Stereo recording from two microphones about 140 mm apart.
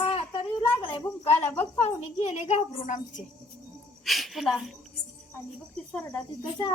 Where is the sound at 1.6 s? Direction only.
50° left (ahead or behind).